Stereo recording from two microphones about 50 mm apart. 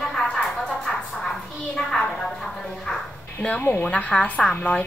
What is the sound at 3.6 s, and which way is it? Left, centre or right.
Speech, left.